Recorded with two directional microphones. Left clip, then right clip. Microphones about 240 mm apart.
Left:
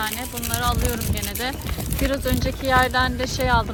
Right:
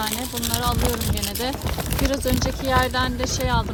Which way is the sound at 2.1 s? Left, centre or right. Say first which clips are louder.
Even; centre.